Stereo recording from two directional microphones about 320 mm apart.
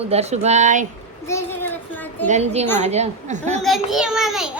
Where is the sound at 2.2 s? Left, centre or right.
Right.